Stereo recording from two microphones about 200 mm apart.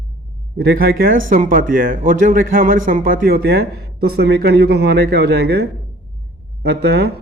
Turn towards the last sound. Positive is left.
turn(degrees=-55)  # may be behind; listen again after turning